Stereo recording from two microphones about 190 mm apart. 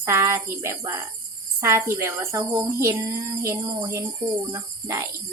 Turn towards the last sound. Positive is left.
turn(degrees=-15)  # may be behind; listen again after turning